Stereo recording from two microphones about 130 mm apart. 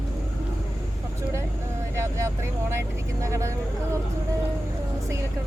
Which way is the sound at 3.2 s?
25° right (ahead or behind).